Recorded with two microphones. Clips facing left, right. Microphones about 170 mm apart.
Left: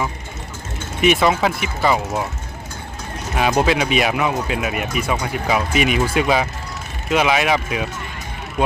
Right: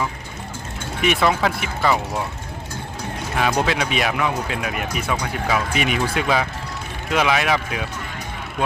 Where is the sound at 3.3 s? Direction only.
10° left (ahead or behind).